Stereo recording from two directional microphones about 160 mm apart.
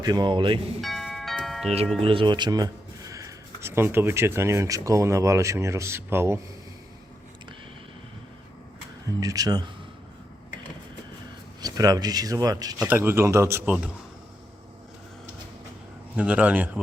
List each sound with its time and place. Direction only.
0.0 s speech: 25° right (ahead or behind)
0.8 s music: centre (ahead or behind)
2.0 s speech: 35° right (ahead or behind); by 6.4 s 15° right (ahead or behind)
9.2 s speech: 20° right (ahead or behind)
11.6 s speech: 25° right (ahead or behind)
12.8 s speech: 15° right (ahead or behind)
16.1 s speech: 10° right (ahead or behind)